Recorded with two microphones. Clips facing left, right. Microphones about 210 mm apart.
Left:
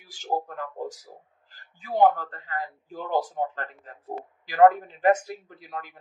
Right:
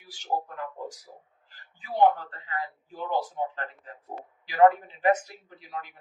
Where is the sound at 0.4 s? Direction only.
40° left (ahead or behind).